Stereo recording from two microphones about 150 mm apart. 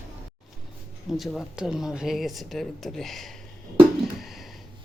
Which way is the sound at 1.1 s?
Centre (ahead or behind).